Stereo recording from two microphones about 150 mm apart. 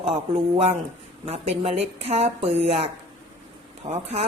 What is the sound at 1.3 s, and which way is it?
A woman's voice, 45° right (ahead or behind).